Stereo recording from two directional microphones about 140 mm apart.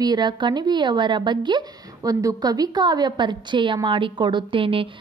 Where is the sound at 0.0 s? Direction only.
30° right (ahead or behind).